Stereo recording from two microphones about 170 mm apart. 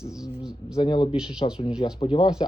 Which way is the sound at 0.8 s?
25° left (ahead or behind).